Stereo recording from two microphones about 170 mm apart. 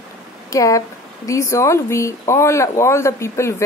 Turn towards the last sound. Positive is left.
turn(degrees=15)  # may be behind; listen again after turning